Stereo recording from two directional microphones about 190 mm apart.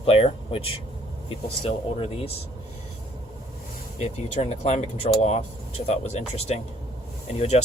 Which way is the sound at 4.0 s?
35° left (ahead or behind).